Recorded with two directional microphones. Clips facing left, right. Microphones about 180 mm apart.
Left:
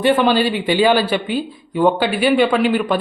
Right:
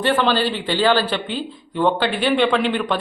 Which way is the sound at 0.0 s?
10° left (ahead or behind).